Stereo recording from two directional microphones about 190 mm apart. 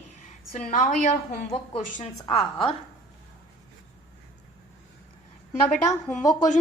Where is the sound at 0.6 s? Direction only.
40° left (ahead or behind).